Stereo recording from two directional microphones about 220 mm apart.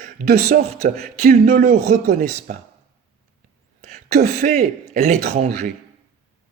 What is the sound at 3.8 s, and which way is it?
A man's voice, 35° right (ahead or behind).